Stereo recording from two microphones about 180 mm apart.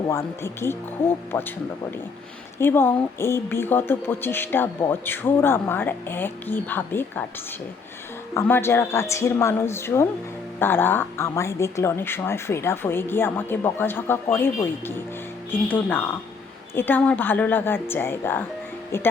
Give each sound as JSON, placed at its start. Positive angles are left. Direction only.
{"t": 0.1, "sound": "speech", "side_deg": 15}
{"t": 2.6, "sound": "speech", "side_deg": 10}
{"t": 8.3, "sound": "speech", "side_deg": 15}